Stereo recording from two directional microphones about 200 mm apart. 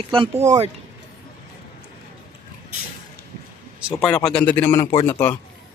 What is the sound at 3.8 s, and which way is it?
A man's voice, 5° left (ahead or behind).